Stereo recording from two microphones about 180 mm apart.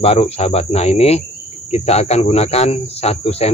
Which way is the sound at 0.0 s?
35° left (ahead or behind).